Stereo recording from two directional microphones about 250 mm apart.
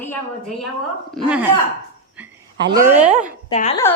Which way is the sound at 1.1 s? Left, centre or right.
Centre.